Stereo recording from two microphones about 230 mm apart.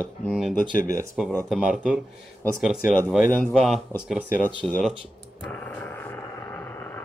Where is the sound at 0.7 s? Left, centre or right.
Left.